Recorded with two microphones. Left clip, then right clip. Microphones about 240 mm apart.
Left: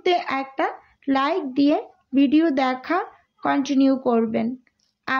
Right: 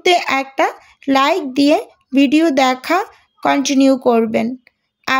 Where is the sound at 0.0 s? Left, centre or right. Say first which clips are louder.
Right 8 dB; right.